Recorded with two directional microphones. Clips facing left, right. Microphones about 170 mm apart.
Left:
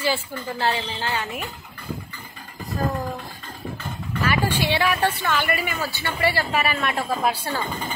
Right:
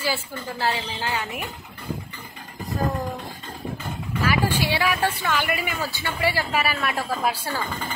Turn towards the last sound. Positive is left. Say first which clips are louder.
# left 1 dB
turn(degrees=20)  # may be behind; listen again after turning